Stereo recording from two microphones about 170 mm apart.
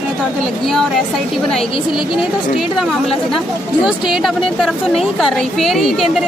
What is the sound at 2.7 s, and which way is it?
A woman's voice, centre (ahead or behind).